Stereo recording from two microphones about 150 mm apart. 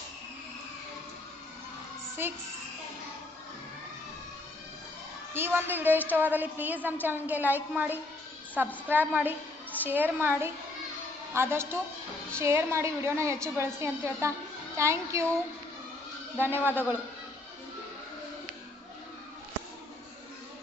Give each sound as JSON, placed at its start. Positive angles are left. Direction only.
{"t": 2.2, "sound": "a woman's voice", "side_deg": -15}
{"t": 5.3, "sound": "a woman's voice", "side_deg": -15}
{"t": 16.4, "sound": "a woman's voice", "side_deg": -15}